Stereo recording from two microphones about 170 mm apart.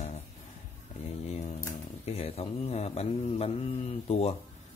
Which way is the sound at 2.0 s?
35° left (ahead or behind).